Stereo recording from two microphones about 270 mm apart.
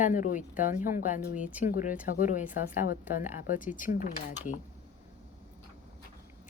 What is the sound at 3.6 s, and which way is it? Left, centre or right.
Speech, centre.